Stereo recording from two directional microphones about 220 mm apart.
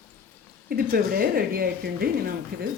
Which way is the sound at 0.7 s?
40° right (ahead or behind).